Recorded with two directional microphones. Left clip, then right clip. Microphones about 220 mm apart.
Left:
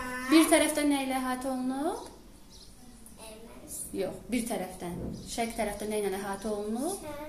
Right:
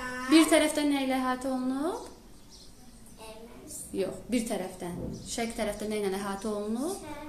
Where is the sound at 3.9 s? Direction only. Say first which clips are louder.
Right 2 dB; 5° right (ahead or behind).